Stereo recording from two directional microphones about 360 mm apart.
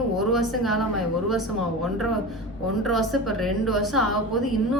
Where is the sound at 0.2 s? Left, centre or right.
Centre.